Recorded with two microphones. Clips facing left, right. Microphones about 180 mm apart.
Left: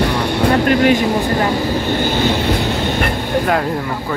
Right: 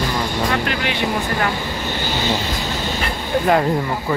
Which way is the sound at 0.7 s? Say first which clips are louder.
Left 10 dB; 45° left (ahead or behind).